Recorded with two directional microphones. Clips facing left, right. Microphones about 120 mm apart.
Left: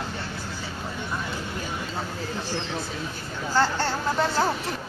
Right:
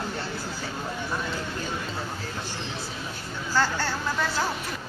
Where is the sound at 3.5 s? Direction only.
20° left (ahead or behind).